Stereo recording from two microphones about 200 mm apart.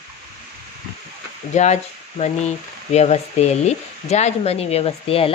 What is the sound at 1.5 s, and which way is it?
Speech, 35° left (ahead or behind).